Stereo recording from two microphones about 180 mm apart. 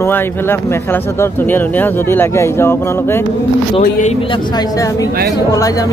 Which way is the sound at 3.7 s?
40° left (ahead or behind).